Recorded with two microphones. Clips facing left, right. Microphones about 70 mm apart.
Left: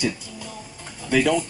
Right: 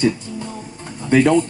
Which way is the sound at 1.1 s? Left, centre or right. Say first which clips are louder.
Right 6 dB; right.